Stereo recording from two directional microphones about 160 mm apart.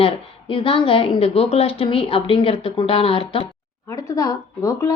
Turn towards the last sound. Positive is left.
turn(degrees=20)  # may be behind; listen again after turning